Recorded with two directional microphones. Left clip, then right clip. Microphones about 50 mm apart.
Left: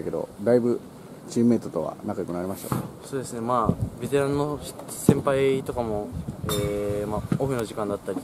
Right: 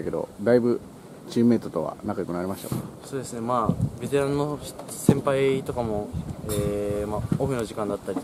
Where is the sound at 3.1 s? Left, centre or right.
Centre.